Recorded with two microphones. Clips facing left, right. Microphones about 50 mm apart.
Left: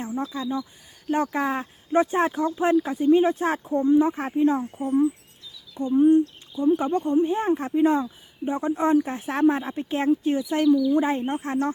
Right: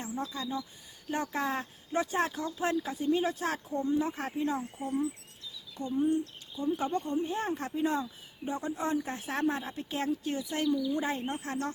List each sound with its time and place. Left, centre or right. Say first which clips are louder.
0.1 s speech: left 6 dB; left